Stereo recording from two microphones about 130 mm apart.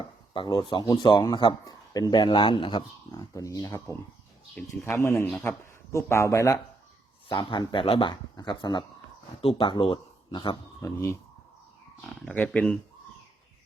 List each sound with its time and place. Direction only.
0.3 s a man's voice: 40° left (ahead or behind); by 5.5 s 10° left (ahead or behind)
5.9 s speech: 20° left (ahead or behind)
7.3 s speech: 40° left (ahead or behind)
10.8 s speech: 20° left (ahead or behind)
12.3 s a man's voice: 10° left (ahead or behind)